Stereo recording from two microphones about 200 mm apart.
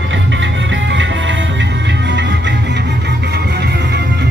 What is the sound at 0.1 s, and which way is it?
Music, 65° right (ahead or behind).